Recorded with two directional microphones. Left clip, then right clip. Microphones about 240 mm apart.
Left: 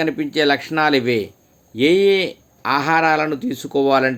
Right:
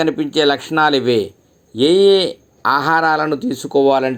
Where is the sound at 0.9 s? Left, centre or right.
Left.